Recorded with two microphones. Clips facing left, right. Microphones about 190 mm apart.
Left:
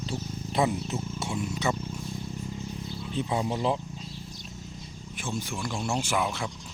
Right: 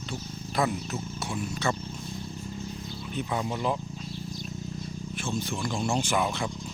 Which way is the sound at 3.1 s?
25° left (ahead or behind).